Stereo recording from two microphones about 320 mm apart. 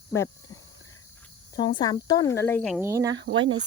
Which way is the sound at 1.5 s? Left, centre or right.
Centre.